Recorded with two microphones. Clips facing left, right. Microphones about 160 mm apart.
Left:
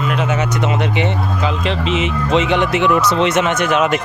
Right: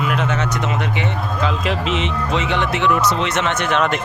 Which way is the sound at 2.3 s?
20° left (ahead or behind).